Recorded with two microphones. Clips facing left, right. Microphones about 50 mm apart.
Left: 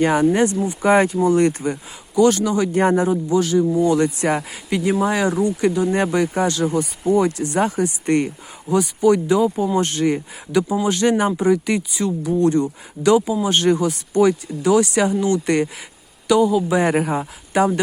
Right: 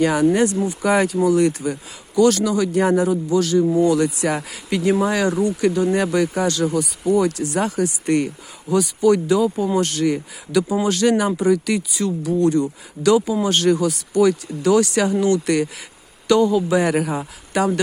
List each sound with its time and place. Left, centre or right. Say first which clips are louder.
0.0 s speech: even; left
2.1 s speech: even; left
4.4 s speech: right 1 dB; centre
12.5 s speech: even; left
16.3 s speech: even; centre
16.7 s speech: left 1 dB; left